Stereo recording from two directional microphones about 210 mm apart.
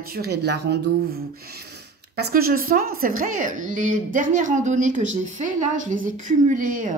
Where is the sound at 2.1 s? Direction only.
45° right (ahead or behind).